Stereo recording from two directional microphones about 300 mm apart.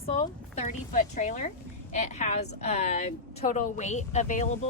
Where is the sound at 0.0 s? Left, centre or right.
Left.